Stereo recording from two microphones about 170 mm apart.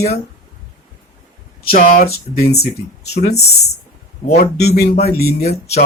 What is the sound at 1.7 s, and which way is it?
Speech, 55° left (ahead or behind).